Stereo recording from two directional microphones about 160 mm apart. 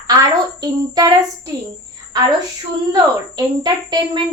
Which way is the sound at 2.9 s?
25° right (ahead or behind).